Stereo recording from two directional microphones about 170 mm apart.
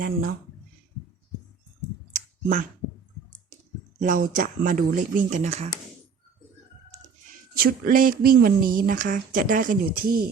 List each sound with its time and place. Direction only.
0.0 s speech: 60° right (ahead or behind)
2.1 s clicking: 50° right (ahead or behind)
4.0 s speech: 50° right (ahead or behind)
7.5 s speech: 60° right (ahead or behind)